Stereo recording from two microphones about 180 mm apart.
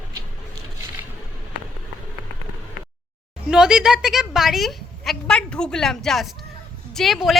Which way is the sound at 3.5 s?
5° right (ahead or behind).